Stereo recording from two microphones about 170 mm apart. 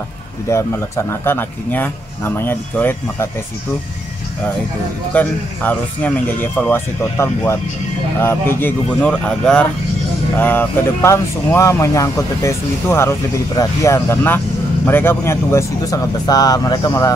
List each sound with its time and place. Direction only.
0.5 s speech: 15° left (ahead or behind)
5.1 s speech: 10° left (ahead or behind)